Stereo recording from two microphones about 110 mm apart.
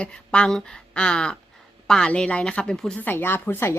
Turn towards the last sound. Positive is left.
turn(degrees=20)  # may be behind; listen again after turning